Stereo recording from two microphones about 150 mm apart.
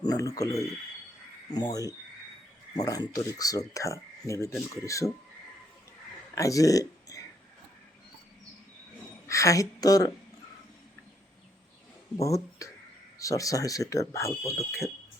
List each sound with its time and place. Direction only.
0.0 s speech: 25° left (ahead or behind)
6.3 s speech: 20° left (ahead or behind)
9.2 s a woman's voice: 20° left (ahead or behind)
12.1 s speech: 20° left (ahead or behind)